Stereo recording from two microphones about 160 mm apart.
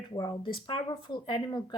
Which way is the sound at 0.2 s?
30° left (ahead or behind).